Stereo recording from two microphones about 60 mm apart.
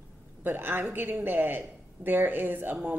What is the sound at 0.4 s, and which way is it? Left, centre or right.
Speech, right.